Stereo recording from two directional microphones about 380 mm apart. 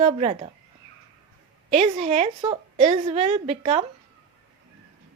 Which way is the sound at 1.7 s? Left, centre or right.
Centre.